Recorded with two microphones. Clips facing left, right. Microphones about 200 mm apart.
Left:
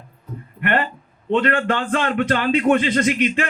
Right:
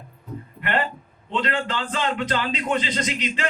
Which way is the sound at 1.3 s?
55° left (ahead or behind).